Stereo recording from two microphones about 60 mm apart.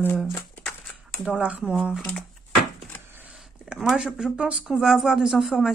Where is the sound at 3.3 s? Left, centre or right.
Centre.